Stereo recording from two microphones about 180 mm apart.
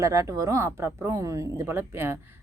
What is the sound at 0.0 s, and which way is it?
Speech, 15° right (ahead or behind).